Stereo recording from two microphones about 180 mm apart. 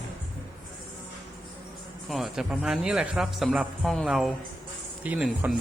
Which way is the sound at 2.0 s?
Centre (ahead or behind).